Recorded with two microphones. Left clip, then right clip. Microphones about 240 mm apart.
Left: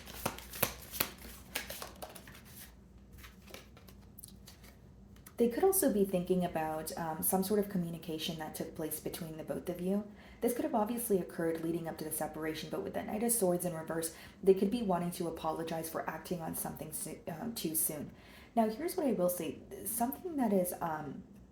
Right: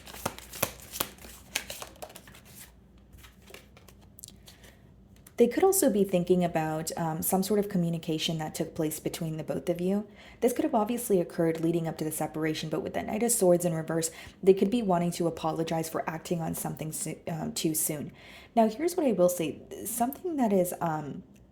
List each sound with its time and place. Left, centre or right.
0.2 s shuffling cards: right
5.4 s a woman's voice: right